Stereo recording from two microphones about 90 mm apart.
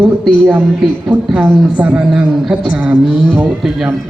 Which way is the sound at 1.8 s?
15° right (ahead or behind).